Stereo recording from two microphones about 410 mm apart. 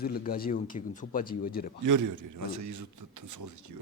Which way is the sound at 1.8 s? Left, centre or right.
Right.